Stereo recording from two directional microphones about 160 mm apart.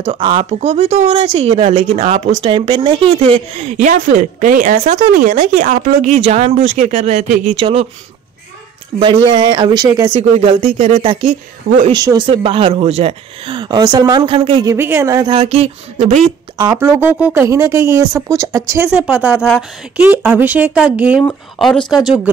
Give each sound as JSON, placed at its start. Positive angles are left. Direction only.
{"t": 0.2, "sound": "speech", "side_deg": -35}
{"t": 9.0, "sound": "speech", "side_deg": -30}
{"t": 11.9, "sound": "speech", "side_deg": -25}
{"t": 12.3, "sound": "speech", "side_deg": -35}
{"t": 14.7, "sound": "speech", "side_deg": -15}
{"t": 15.3, "sound": "speech", "side_deg": -40}
{"t": 16.5, "sound": "speech", "side_deg": -20}
{"t": 21.2, "sound": "speech", "side_deg": 5}